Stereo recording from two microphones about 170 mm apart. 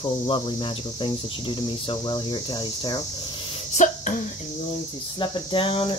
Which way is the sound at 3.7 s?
45° left (ahead or behind).